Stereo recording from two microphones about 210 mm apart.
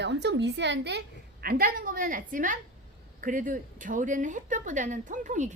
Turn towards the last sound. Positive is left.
turn(degrees=-35)  # may be behind; listen again after turning